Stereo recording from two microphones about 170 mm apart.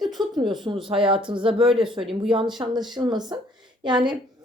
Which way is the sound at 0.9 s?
30° right (ahead or behind).